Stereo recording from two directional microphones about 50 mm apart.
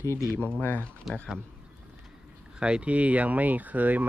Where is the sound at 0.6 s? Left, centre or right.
Left.